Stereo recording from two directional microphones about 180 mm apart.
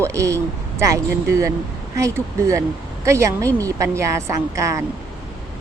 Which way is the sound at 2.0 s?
15° right (ahead or behind).